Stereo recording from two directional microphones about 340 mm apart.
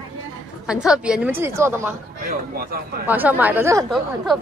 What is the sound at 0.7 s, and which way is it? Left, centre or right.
A woman's voice, centre.